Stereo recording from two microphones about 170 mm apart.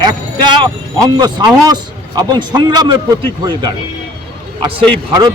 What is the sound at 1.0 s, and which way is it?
A man's voice, 25° right (ahead or behind).